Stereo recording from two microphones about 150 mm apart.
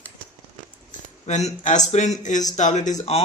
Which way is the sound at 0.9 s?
50° left (ahead or behind).